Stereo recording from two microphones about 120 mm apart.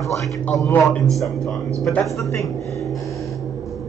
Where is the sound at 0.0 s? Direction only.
Centre (ahead or behind).